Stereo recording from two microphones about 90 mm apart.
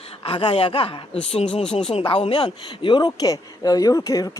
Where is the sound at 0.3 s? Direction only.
90° left.